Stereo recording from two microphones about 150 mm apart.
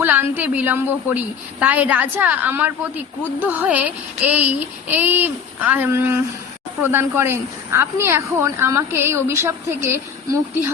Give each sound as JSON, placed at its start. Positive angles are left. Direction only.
{"t": 0.0, "sound": "speech", "side_deg": -10}